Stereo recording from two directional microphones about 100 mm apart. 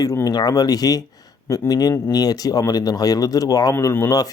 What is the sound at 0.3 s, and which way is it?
Speech, 40° left (ahead or behind).